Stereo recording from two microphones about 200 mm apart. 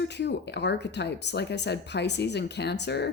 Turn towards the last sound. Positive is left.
turn(degrees=55)  # may be behind; listen again after turning